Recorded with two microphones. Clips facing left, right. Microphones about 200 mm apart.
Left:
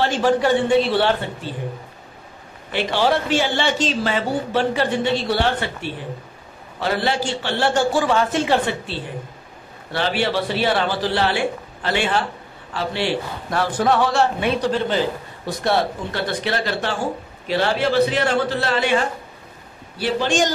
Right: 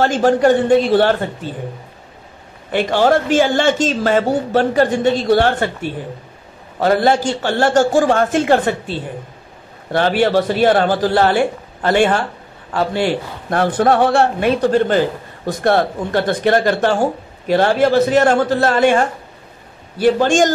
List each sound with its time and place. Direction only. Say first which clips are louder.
0.0 s a woman's voice: right 5 dB; 45° right (ahead or behind)
2.7 s a woman's voice: right 5 dB; 50° right (ahead or behind)